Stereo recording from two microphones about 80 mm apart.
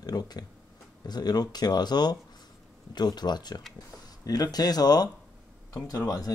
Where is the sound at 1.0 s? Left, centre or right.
Left.